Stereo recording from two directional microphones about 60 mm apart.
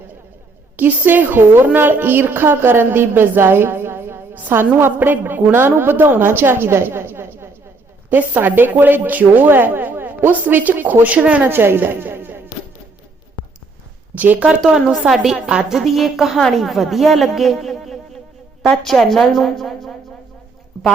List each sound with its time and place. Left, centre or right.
0.8 s a woman's voice: right
8.1 s a woman's voice: right
11.4 s a woman's voice: right
13.4 s a sound: left
14.6 s a woman's voice: centre